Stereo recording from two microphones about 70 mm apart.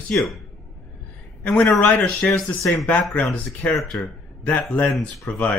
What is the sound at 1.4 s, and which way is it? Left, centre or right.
Speech, centre.